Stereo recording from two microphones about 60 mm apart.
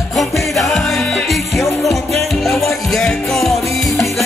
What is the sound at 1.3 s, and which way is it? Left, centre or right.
Music, centre.